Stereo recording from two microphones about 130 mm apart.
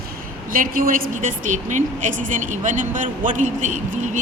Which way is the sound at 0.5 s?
90° right.